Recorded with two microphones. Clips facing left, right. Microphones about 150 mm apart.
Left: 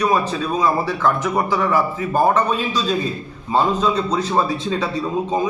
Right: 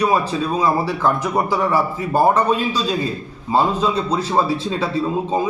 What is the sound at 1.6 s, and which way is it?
Speech, 30° right (ahead or behind).